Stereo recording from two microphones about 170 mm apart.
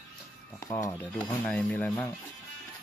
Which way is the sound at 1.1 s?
5° left (ahead or behind).